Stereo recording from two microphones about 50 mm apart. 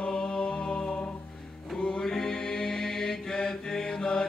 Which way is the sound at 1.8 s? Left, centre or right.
Centre.